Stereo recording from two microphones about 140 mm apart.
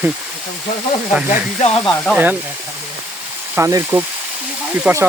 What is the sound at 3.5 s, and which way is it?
Speech, 20° right (ahead or behind).